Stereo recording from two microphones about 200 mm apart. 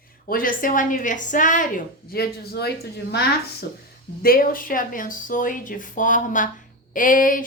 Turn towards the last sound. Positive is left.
turn(degrees=45)  # may be behind; listen again after turning